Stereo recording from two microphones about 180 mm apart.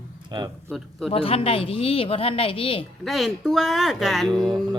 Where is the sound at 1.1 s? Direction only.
30° left (ahead or behind).